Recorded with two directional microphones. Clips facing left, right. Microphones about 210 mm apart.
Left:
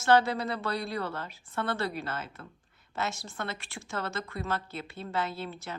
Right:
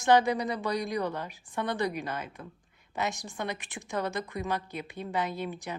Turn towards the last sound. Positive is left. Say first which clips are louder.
# right 3 dB
turn(degrees=-15)  # may be behind; listen again after turning